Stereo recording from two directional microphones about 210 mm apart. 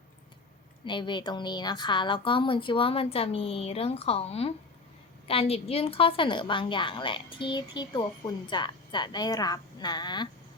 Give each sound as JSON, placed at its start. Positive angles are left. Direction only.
{"t": 0.9, "sound": "a woman's voice", "side_deg": 20}